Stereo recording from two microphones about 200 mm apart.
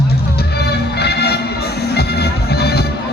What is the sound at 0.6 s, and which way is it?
Music, 55° left (ahead or behind).